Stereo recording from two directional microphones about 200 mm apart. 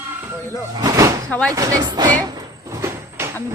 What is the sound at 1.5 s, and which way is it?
Speech, 15° right (ahead or behind).